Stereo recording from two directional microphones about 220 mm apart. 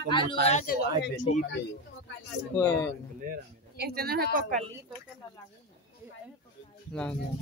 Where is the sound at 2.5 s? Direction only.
10° left (ahead or behind).